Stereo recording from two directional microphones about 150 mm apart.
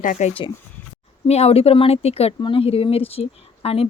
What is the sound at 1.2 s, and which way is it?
A woman's voice, 45° left (ahead or behind).